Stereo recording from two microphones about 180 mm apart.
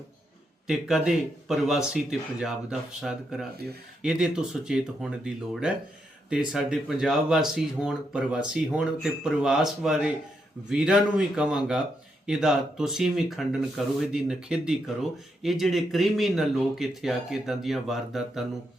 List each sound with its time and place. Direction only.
0.7 s speech: 5° right (ahead or behind)